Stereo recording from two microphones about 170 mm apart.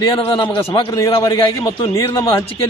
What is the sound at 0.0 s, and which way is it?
Speech, 30° left (ahead or behind).